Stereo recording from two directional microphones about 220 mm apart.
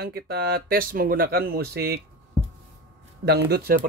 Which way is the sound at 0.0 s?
45° right (ahead or behind).